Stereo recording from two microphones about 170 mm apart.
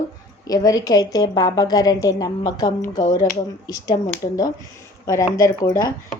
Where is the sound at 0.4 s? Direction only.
20° left (ahead or behind).